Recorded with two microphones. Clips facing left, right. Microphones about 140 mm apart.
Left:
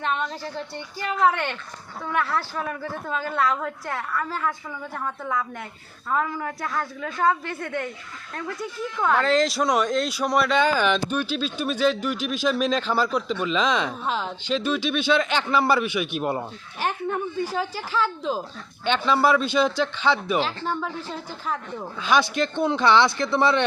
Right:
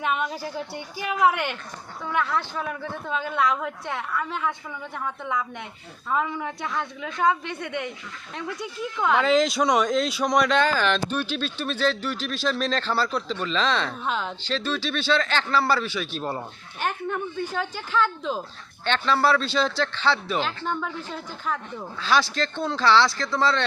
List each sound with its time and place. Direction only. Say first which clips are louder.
0.0 s a woman's voice: right 1 dB; 10° right (ahead or behind)
2.1 s speech: even; centre (ahead or behind)
3.3 s a woman's voice: even; 15° right (ahead or behind)
3.8 s speech: left 1 dB; centre (ahead or behind)
14.1 s speech: right 1 dB; centre (ahead or behind)
14.4 s speech: left 7 dB; 15° left (ahead or behind)
17.1 s a woman's voice: left 2 dB; 35° left (ahead or behind)
17.6 s speech: right 3 dB; 5° left (ahead or behind)
21.8 s speech: left 2 dB; 15° left (ahead or behind)